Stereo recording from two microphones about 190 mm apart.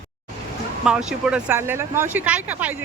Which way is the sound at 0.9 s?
5° right (ahead or behind).